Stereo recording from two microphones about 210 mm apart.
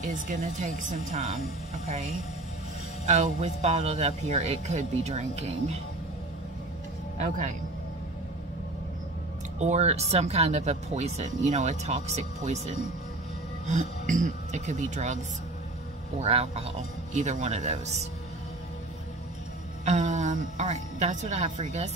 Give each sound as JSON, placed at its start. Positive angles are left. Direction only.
{"t": 0.0, "sound": "speech", "side_deg": -35}
{"t": 7.2, "sound": "speech", "side_deg": -35}
{"t": 9.6, "sound": "speech", "side_deg": -30}
{"t": 16.2, "sound": "speech", "side_deg": -30}
{"t": 19.8, "sound": "speech", "side_deg": -35}